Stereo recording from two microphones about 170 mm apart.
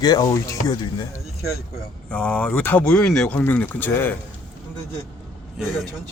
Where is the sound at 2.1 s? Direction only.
5° left (ahead or behind).